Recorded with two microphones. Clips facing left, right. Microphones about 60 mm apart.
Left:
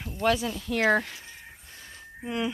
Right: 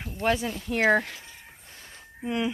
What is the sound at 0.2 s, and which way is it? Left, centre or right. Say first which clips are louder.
Speech: left 1 dB; right.